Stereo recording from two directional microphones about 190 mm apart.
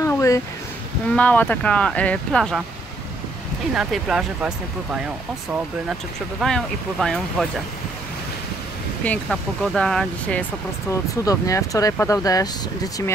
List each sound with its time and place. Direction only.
0.0 s a sound: 15° left (ahead or behind)
1.1 s speech: 10° left (ahead or behind)
3.7 s speech: centre (ahead or behind)
6.4 s speech: centre (ahead or behind)
9.0 s speech: 5° left (ahead or behind)
10.9 s speech: 15° left (ahead or behind)